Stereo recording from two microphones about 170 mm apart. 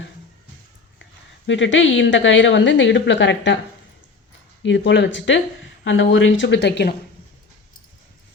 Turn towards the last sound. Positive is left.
turn(degrees=85)